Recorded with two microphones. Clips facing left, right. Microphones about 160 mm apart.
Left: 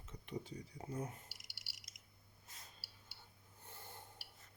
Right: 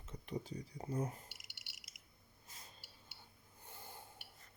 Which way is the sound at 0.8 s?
35° right (ahead or behind).